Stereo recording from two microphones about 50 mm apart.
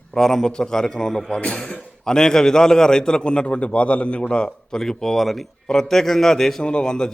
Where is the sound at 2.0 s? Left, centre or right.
Centre.